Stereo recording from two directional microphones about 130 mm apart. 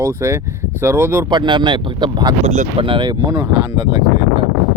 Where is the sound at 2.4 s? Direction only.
65° right (ahead or behind).